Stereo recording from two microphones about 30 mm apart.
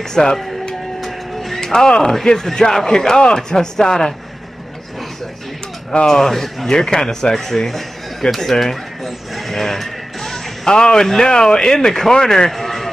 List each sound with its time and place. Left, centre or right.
0.1 s speech: left
1.0 s vehicle: centre
1.6 s speech: centre
6.0 s speech: centre
8.4 s a sound: centre
10.7 s speech: left
12.4 s a sound: centre